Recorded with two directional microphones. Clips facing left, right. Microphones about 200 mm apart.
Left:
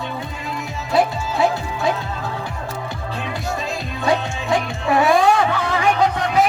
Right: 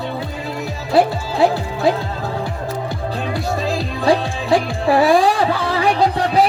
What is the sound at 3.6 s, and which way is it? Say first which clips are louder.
Speech: right 5 dB; 30° right (ahead or behind).